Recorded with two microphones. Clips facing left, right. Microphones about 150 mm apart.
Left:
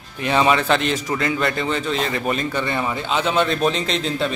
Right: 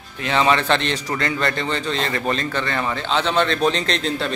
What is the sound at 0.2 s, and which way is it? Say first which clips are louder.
A man's voice: left 1 dB; 15° left (ahead or behind).